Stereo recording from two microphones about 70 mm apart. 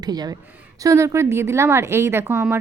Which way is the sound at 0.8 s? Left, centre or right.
Right.